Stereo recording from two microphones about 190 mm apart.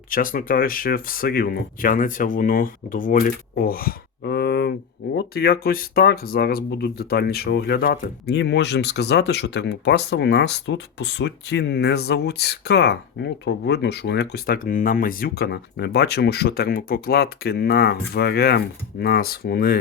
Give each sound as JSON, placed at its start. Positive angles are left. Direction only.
{"t": 0.1, "sound": "speech", "side_deg": 45}